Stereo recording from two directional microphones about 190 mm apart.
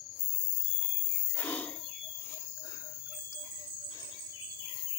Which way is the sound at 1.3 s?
10° left (ahead or behind).